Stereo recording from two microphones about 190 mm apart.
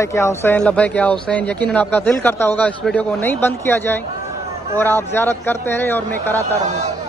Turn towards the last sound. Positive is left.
turn(degrees=10)  # may be behind; listen again after turning